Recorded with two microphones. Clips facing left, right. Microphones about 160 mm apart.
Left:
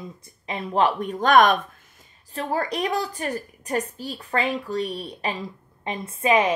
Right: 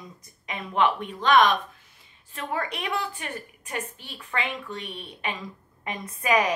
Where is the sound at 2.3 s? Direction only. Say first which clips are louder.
Left 5 dB; 35° left (ahead or behind).